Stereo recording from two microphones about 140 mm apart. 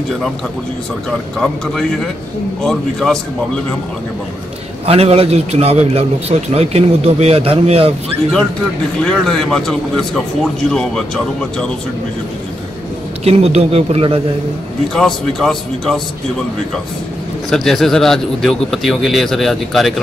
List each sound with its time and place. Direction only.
2.6 s a man's voice: 5° left (ahead or behind)
4.8 s a man's voice: 45° right (ahead or behind)
9.0 s a man's voice: 5° left (ahead or behind)
13.2 s a man's voice: 45° right (ahead or behind)
15.0 s a man's voice: centre (ahead or behind)
17.5 s a man's voice: centre (ahead or behind)